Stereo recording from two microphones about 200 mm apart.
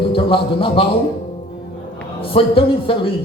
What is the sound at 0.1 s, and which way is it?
Speech, 25° left (ahead or behind).